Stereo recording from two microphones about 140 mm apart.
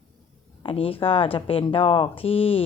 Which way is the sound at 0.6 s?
40° left (ahead or behind).